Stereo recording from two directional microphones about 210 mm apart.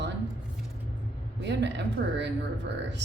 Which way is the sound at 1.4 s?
55° right (ahead or behind).